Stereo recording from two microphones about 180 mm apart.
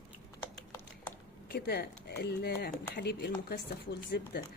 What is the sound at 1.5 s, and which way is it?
Speech, 65° left (ahead or behind).